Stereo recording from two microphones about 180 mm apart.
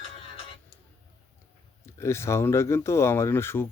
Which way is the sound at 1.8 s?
15° left (ahead or behind).